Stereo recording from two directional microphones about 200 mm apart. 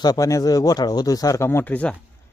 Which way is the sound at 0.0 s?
15° left (ahead or behind).